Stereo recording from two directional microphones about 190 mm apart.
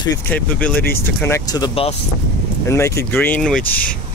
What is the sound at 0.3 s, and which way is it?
Speech, 10° left (ahead or behind).